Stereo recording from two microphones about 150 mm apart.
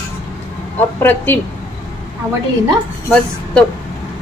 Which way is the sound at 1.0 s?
15° left (ahead or behind).